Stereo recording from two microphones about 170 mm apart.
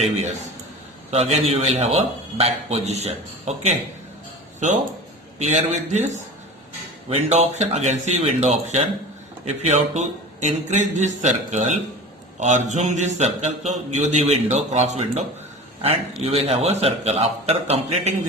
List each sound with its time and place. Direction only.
1.1 s a man's voice: 40° right (ahead or behind)
5.4 s a man's voice: 40° right (ahead or behind)